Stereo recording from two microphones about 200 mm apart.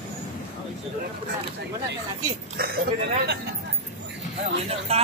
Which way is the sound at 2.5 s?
50° right (ahead or behind).